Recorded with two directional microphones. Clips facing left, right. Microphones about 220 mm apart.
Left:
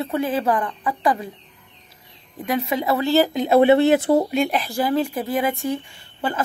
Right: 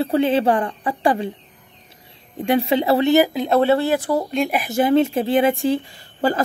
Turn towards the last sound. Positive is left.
turn(degrees=-35)  # may be behind; listen again after turning